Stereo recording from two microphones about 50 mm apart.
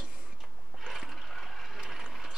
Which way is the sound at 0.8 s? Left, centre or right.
Centre.